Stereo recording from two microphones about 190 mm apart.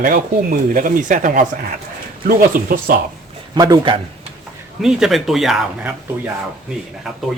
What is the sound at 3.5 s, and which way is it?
Speech, 20° right (ahead or behind).